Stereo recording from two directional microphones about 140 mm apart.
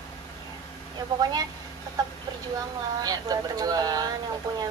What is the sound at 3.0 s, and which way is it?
A woman's voice, 25° right (ahead or behind).